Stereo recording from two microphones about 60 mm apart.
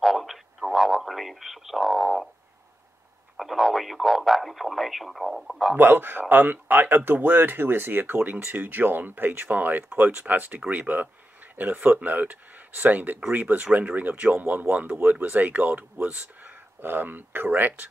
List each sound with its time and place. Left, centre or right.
0.0 s radio: centre
3.3 s speech: centre
5.8 s speech: right